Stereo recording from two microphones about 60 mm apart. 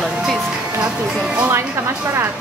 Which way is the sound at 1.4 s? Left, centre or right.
Right.